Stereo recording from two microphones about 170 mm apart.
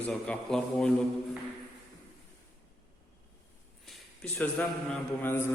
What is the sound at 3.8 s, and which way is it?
A man's voice, 5° left (ahead or behind).